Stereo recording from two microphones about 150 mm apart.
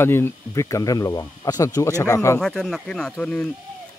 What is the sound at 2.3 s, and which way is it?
Speech, 5° left (ahead or behind).